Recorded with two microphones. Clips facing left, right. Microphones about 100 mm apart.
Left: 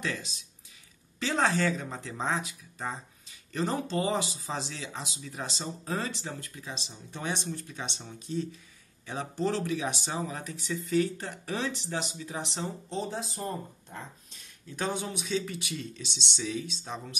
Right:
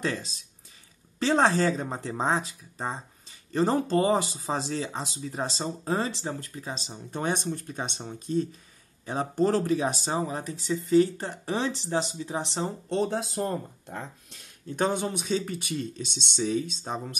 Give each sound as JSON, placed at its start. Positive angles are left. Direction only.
{"t": 0.0, "sound": "speech", "side_deg": -35}
{"t": 12.6, "sound": "speech", "side_deg": -60}